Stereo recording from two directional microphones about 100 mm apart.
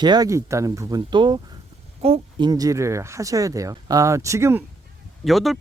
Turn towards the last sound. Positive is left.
turn(degrees=0)  # may be behind; listen again after turning